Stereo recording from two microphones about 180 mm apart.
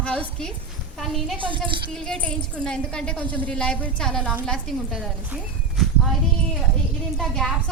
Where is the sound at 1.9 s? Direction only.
5° left (ahead or behind).